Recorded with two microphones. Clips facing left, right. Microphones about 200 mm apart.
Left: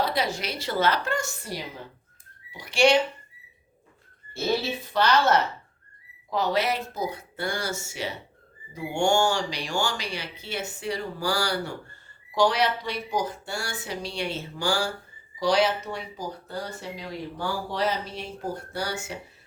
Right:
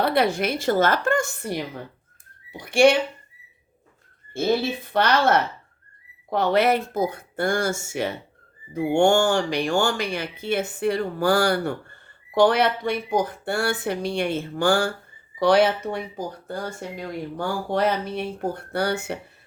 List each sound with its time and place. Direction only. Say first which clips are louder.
0.0 s speech: right 6 dB; 60° right (ahead or behind)
4.4 s speech: right 4 dB; 55° right (ahead or behind)